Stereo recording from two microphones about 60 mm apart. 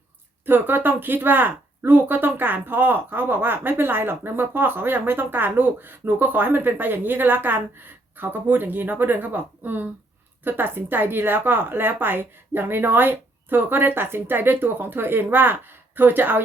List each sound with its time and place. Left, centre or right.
0.4 s speech: right